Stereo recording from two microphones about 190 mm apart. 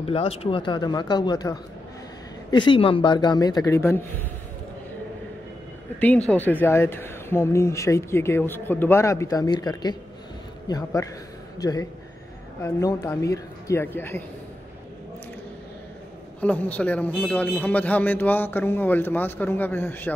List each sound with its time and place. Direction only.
0.0 s speech: 30° left (ahead or behind); by 4.3 s 15° left (ahead or behind)
5.9 s speech: 10° left (ahead or behind)
16.3 s speech: 10° left (ahead or behind)